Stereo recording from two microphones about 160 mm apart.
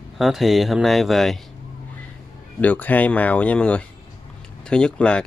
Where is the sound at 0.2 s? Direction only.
Centre (ahead or behind).